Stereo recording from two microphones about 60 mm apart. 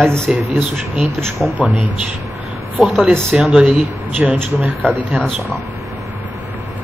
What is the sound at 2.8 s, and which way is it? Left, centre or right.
Speech, centre.